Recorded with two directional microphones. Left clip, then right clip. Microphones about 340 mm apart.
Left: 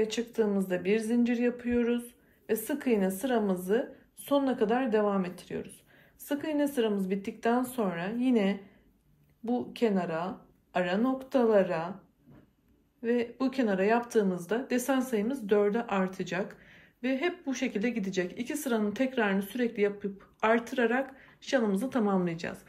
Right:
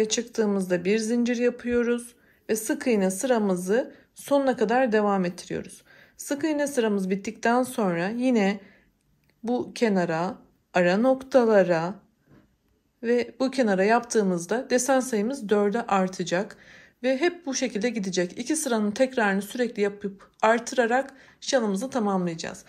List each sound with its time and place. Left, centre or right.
0.0 s speech: centre
13.0 s speech: centre